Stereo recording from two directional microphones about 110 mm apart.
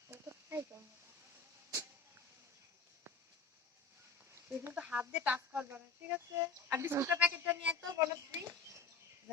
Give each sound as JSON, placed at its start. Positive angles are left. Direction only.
{"t": 4.3, "sound": "a sound", "side_deg": -20}
{"t": 4.8, "sound": "speech", "side_deg": -10}
{"t": 7.9, "sound": "speech", "side_deg": -30}